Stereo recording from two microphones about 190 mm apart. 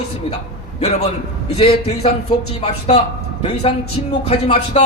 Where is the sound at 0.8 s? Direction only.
35° left (ahead or behind).